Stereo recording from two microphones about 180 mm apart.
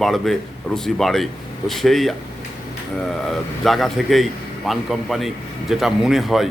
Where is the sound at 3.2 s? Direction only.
Centre (ahead or behind).